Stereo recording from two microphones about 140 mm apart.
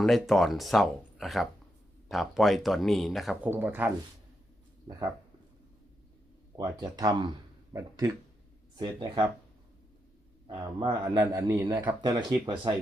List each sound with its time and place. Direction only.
0.0 s speech: centre (ahead or behind)
3.4 s a man's voice: 15° right (ahead or behind)
6.6 s a man's voice: 30° right (ahead or behind)
11.1 s a man's voice: 25° right (ahead or behind)